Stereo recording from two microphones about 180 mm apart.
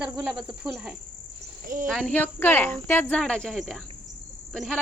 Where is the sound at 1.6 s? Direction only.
50° right (ahead or behind).